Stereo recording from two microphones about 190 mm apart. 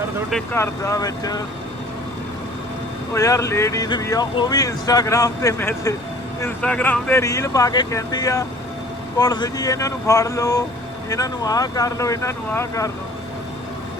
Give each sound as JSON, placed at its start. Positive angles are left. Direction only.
{"t": 0.5, "sound": "speech", "side_deg": 15}
{"t": 3.2, "sound": "speech", "side_deg": 15}